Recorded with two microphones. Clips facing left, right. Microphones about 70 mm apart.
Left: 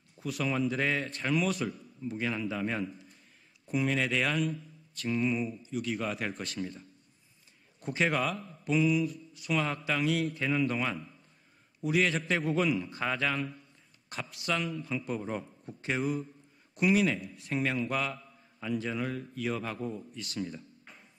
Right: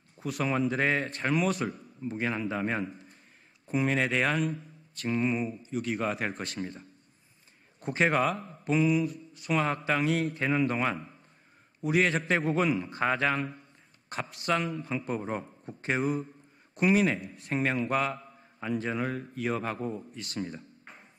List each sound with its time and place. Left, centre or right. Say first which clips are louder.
0.2 s a man's voice: right 2 dB; right